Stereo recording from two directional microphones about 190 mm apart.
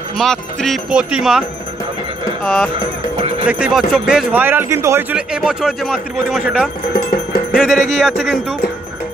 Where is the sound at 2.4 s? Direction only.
Centre (ahead or behind).